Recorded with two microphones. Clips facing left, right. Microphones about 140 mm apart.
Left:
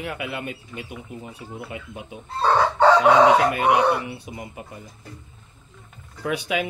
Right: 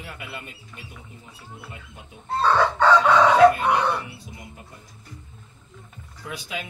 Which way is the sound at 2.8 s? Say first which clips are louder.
Left 3 dB; 15° left (ahead or behind).